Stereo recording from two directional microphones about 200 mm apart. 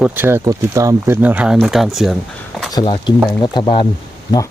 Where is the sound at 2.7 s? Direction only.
25° left (ahead or behind).